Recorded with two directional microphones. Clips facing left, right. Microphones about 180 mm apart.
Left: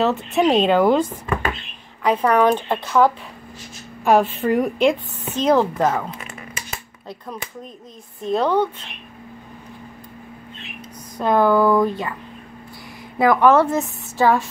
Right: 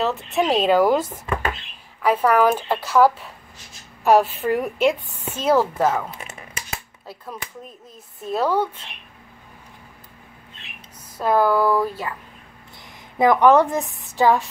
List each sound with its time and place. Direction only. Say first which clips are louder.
0.3 s a woman's voice: left 1 dB; centre (ahead or behind)
2.0 s a woman's voice: left 1 dB; 5° right (ahead or behind)
11.1 s a woman's voice: left 2 dB; 5° right (ahead or behind)
13.2 s a woman's voice: even; 20° right (ahead or behind)